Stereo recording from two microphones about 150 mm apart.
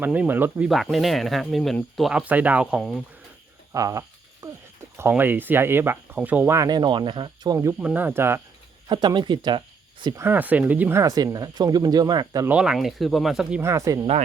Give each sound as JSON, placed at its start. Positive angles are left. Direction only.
{"t": 0.0, "sound": "speech", "side_deg": -10}
{"t": 0.7, "sound": "speech", "side_deg": 0}
{"t": 3.7, "sound": "speech", "side_deg": -20}
{"t": 4.4, "sound": "a sound", "side_deg": -20}
{"t": 4.9, "sound": "speech", "side_deg": -15}
{"t": 7.8, "sound": "speech", "side_deg": -10}
{"t": 8.9, "sound": "speech", "side_deg": -30}
{"t": 10.2, "sound": "speech", "side_deg": -15}
{"t": 12.5, "sound": "speech", "side_deg": -5}
{"t": 13.6, "sound": "speech", "side_deg": -20}